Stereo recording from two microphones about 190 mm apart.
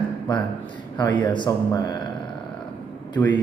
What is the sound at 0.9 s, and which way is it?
A man's voice, 20° left (ahead or behind).